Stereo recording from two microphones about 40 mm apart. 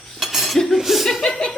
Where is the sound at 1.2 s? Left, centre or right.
Left.